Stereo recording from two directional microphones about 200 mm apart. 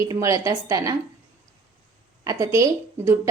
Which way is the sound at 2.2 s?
15° right (ahead or behind).